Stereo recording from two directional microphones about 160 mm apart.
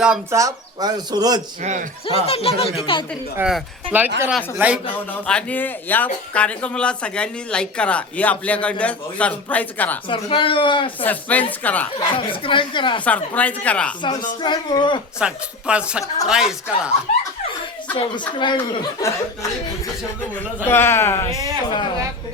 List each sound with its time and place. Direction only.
0.3 s speech: 20° right (ahead or behind)
1.6 s speech: 50° right (ahead or behind)
2.0 s speech: 35° left (ahead or behind)
3.3 s speech: 5° right (ahead or behind)
5.2 s speech: 5° left (ahead or behind)
10.1 s speech: 30° left (ahead or behind)
11.0 s speech: 10° left (ahead or behind)
11.9 s speech: 30° left (ahead or behind)
13.1 s speech: 10° left (ahead or behind)
14.0 s speech: 25° left (ahead or behind)
15.2 s speech: 5° right (ahead or behind)
17.9 s speech: 30° left (ahead or behind)
19.0 s speech: 20° left (ahead or behind)
21.7 s speech: 30° left (ahead or behind)